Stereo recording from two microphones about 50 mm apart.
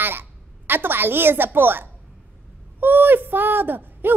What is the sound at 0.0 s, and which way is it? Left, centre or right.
A woman's voice, right.